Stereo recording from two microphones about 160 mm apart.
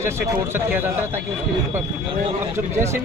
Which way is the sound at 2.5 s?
15° right (ahead or behind).